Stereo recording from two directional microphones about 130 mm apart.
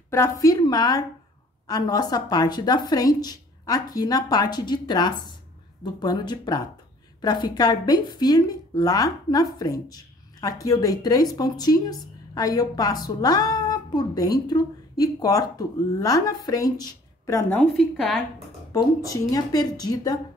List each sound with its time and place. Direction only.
0.1 s speech: 25° left (ahead or behind)
17.7 s a woman's voice: 5° left (ahead or behind)
19.3 s speech: 30° left (ahead or behind)